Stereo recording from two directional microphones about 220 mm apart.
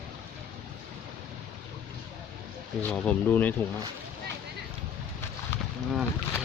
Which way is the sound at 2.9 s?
5° left (ahead or behind).